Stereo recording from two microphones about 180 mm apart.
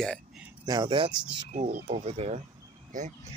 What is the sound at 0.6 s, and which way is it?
Speech, 25° right (ahead or behind).